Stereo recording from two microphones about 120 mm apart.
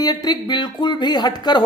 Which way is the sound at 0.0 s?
35° left (ahead or behind).